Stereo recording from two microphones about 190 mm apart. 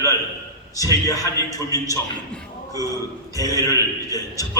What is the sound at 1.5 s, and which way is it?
Speech, 20° left (ahead or behind).